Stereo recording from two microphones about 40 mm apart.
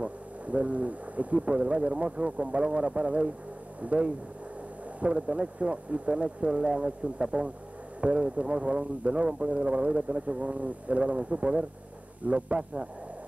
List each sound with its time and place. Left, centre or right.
0.0 s speech: right